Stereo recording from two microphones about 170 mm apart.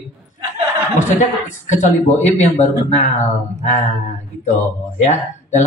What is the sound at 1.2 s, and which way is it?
Speech, 45° left (ahead or behind).